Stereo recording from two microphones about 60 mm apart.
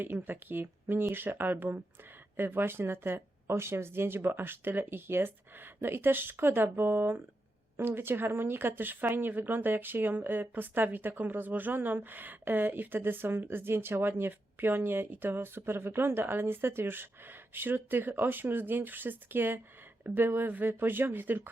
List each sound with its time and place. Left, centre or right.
0.0 s speech: right